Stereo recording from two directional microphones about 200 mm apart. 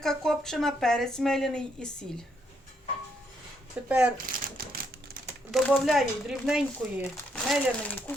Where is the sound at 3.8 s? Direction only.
5° right (ahead or behind).